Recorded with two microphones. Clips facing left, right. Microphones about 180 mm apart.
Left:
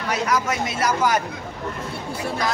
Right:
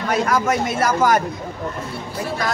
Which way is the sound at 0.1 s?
50° right (ahead or behind).